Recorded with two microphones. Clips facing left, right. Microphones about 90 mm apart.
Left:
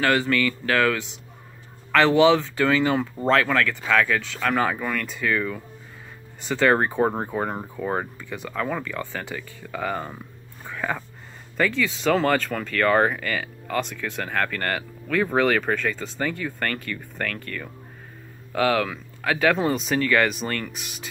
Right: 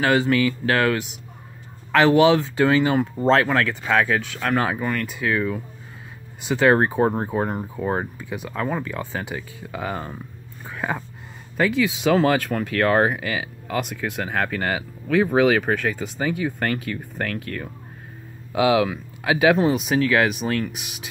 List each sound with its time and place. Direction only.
0.0 s speech: 15° right (ahead or behind)
3.2 s speech: 20° right (ahead or behind)
18.5 s speech: 15° right (ahead or behind)